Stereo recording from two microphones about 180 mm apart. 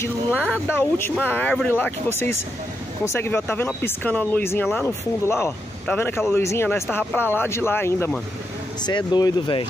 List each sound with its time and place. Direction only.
0.0 s speech: 10° left (ahead or behind)
8.8 s speech: 25° left (ahead or behind)